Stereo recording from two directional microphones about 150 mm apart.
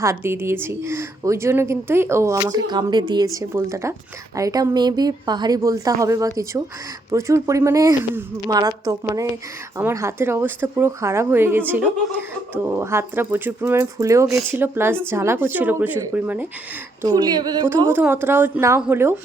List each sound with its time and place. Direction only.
0.0 s a woman's voice: 20° right (ahead or behind)
17.0 s a woman's voice: 25° right (ahead or behind)
17.9 s speech: 15° right (ahead or behind)